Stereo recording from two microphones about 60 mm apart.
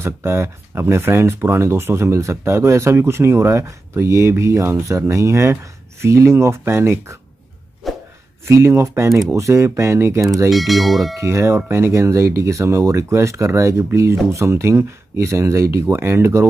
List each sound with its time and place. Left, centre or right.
0.0 s speech: right
7.8 s a sound: centre
8.5 s speech: right
10.5 s speech: centre
11.1 s speech: right